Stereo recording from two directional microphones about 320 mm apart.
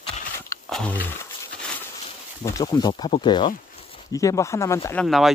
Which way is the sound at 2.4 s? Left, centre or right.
Centre.